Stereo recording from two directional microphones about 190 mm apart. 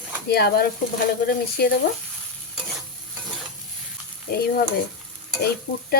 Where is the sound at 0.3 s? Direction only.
55° left (ahead or behind).